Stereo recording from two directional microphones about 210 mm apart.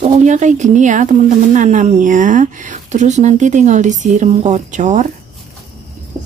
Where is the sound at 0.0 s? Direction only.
35° right (ahead or behind).